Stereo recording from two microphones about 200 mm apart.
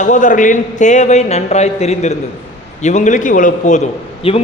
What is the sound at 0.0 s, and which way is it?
A man's voice, 40° left (ahead or behind).